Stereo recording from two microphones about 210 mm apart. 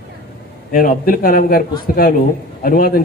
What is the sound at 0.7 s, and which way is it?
Speech, 45° left (ahead or behind).